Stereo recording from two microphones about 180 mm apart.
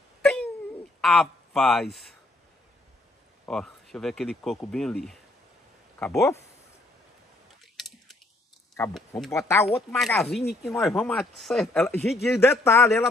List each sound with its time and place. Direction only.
0.2 s a sound: 10° left (ahead or behind)
1.0 s speech: centre (ahead or behind)
3.4 s speech: 5° left (ahead or behind)
8.9 s speech: centre (ahead or behind)
9.3 s speech: 15° left (ahead or behind)
9.8 s speech: centre (ahead or behind)
12.4 s speech: 15° left (ahead or behind)